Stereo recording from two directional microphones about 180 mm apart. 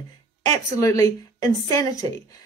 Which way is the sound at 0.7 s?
20° left (ahead or behind).